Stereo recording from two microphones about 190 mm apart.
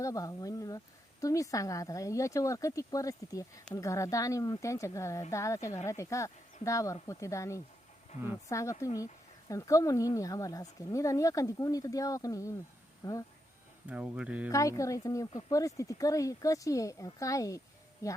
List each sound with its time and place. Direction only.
0.0 s speech: 20° left (ahead or behind)
8.1 s speech: 35° left (ahead or behind)
8.4 s speech: 15° left (ahead or behind)
13.8 s speech: 5° right (ahead or behind)
14.5 s speech: 15° left (ahead or behind)